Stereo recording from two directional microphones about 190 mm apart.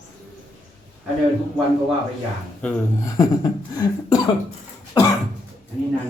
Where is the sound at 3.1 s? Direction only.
20° left (ahead or behind).